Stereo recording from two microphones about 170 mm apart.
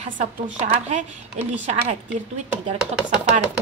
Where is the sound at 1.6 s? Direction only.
40° right (ahead or behind).